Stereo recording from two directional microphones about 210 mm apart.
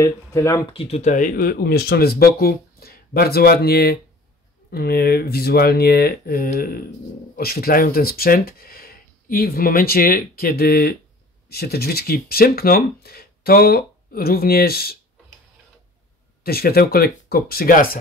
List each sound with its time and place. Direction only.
0.0 s speech: 15° left (ahead or behind); by 15.0 s 45° left (ahead or behind)
16.4 s speech: 45° left (ahead or behind)